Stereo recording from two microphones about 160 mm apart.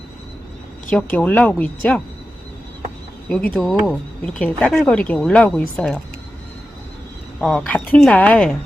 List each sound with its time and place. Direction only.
0.9 s a woman's voice: 10° left (ahead or behind)
3.2 s speech: 5° left (ahead or behind)
7.4 s a woman's voice: 5° left (ahead or behind)